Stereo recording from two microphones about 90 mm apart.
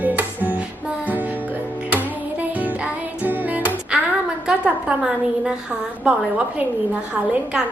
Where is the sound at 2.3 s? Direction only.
20° right (ahead or behind).